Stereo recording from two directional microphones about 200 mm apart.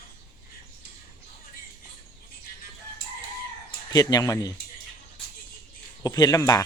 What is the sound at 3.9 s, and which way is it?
Speech, 20° left (ahead or behind).